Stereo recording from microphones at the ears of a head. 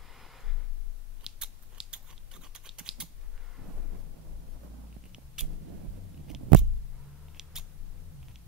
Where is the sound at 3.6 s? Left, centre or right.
Right.